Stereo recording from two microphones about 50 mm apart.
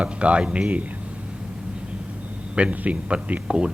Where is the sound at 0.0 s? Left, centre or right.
Right.